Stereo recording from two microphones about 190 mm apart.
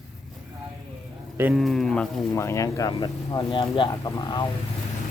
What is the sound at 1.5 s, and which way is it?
Speech, centre (ahead or behind).